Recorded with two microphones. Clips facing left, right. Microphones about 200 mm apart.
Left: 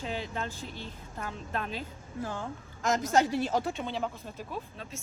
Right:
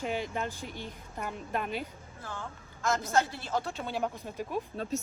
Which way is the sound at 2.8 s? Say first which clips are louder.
Left 2 dB; 15° left (ahead or behind).